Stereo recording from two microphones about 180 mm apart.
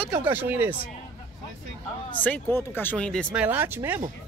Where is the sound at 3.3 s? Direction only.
10° right (ahead or behind).